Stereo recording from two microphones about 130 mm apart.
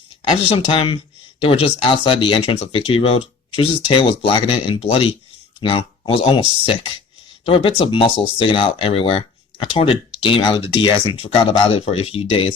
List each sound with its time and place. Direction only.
0.3 s speech: 45° left (ahead or behind)
7.4 s speech: 45° left (ahead or behind)